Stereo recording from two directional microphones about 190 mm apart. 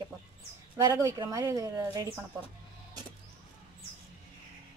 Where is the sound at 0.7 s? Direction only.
15° right (ahead or behind).